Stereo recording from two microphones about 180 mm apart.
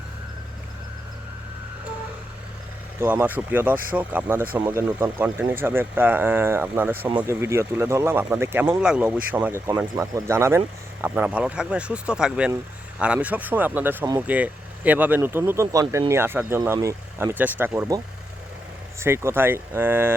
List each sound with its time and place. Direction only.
3.0 s speech: 10° right (ahead or behind)
18.9 s speech: 15° right (ahead or behind)